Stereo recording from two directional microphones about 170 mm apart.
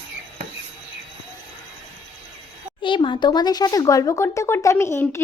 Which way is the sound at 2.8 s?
30° left (ahead or behind).